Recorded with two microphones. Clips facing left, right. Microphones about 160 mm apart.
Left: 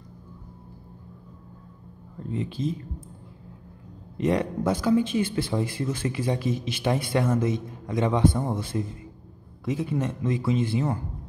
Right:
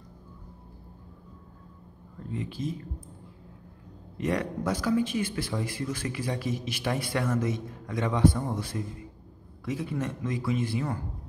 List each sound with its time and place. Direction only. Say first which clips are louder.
2.3 s speech: left 4 dB; 25° left (ahead or behind)
4.2 s speech: left 5 dB; 25° left (ahead or behind)